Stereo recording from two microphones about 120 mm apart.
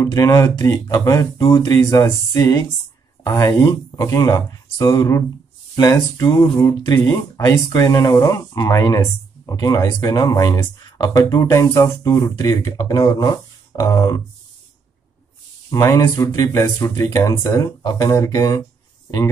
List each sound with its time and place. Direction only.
0.0 s speech: 30° left (ahead or behind)
15.7 s speech: 25° left (ahead or behind)